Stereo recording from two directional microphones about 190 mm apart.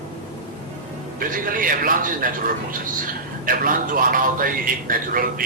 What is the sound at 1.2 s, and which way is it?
A man's voice, 45° right (ahead or behind).